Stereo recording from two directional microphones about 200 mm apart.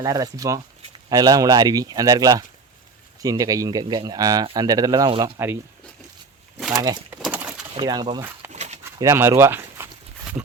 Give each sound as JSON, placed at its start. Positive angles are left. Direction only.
{"t": 0.0, "sound": "speech", "side_deg": -20}
{"t": 6.7, "sound": "speech", "side_deg": -20}
{"t": 7.3, "sound": "bird", "side_deg": -5}
{"t": 7.7, "sound": "speech", "side_deg": -20}
{"t": 8.5, "sound": "a sound", "side_deg": -35}
{"t": 9.0, "sound": "speech", "side_deg": -15}
{"t": 9.4, "sound": "a sound", "side_deg": -10}